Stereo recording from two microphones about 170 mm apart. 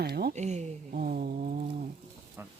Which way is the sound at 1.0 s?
60° right (ahead or behind).